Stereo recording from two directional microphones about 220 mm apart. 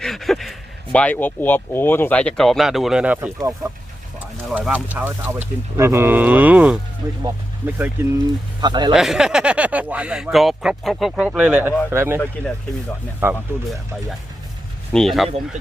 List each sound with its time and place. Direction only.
0.0 s a sound: centre (ahead or behind)
0.9 s a man's voice: 5° left (ahead or behind); by 8.9 s 20° right (ahead or behind)
8.9 s speech: centre (ahead or behind)
13.3 s speech: centre (ahead or behind)